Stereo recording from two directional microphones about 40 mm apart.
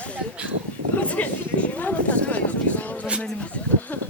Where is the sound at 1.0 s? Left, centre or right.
Left.